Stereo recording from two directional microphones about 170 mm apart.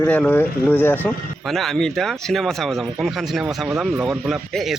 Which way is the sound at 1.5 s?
Centre (ahead or behind).